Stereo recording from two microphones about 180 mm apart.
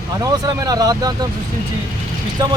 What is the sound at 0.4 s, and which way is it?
Speech, 20° right (ahead or behind).